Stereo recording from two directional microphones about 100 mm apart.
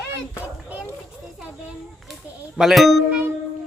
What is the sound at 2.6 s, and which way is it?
Speech, 5° right (ahead or behind).